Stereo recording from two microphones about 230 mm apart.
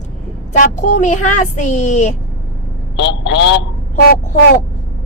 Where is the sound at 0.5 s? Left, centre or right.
Left.